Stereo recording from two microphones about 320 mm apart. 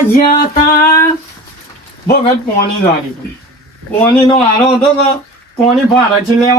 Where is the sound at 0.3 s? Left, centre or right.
Left.